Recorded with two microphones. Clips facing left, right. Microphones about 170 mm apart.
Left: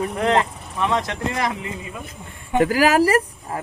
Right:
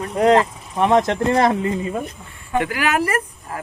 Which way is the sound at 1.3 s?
45° right (ahead or behind).